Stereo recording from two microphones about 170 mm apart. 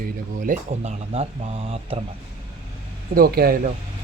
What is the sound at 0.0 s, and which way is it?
Speech, 50° right (ahead or behind).